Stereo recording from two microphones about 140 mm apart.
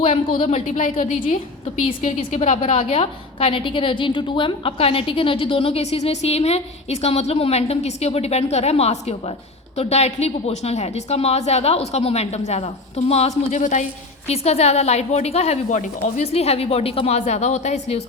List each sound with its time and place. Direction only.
0.0 s a woman's voice: 45° left (ahead or behind)
13.5 s a woman's voice: 60° left (ahead or behind)
14.3 s a woman's voice: 50° left (ahead or behind)